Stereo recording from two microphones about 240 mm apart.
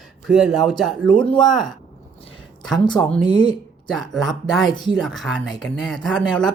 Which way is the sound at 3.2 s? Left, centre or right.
Centre.